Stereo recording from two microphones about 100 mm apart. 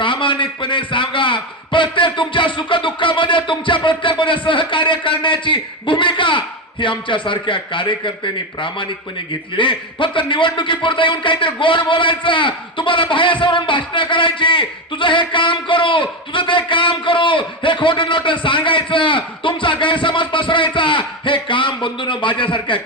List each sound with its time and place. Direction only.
0.0 s a man's voice: 55° left (ahead or behind)